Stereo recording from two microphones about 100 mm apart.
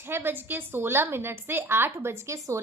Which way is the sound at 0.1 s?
20° right (ahead or behind).